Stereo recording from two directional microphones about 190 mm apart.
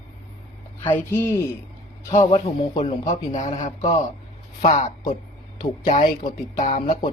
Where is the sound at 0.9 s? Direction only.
10° left (ahead or behind).